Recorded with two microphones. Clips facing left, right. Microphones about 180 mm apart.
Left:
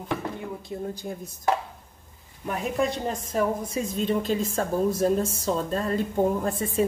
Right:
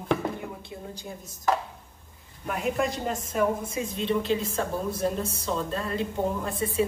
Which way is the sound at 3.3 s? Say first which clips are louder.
Even; 40° left (ahead or behind).